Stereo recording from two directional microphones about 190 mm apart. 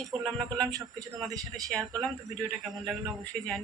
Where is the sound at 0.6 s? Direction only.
20° right (ahead or behind).